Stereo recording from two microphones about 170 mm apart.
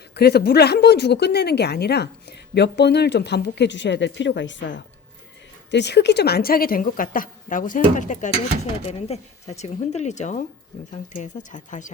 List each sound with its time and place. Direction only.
0.1 s a woman's voice: 70° left (ahead or behind); by 8.3 s 45° left (ahead or behind)
8.9 s speech: 35° left (ahead or behind)